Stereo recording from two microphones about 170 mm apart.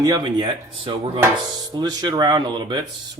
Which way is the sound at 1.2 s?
20° right (ahead or behind).